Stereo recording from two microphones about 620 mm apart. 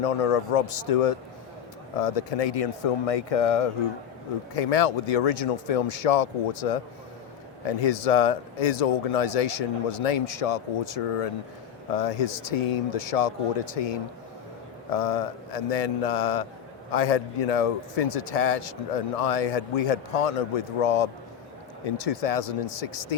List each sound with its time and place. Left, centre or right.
0.0 s speech: left
4.5 s speech: left
7.8 s speech: left